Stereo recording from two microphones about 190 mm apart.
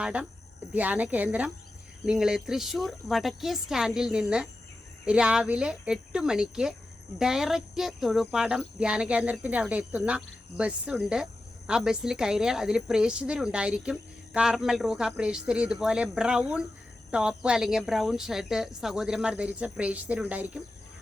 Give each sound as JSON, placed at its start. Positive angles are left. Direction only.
{"t": 0.0, "sound": "speech", "side_deg": -5}